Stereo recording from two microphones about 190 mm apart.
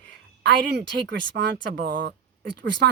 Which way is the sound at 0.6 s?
60° right (ahead or behind).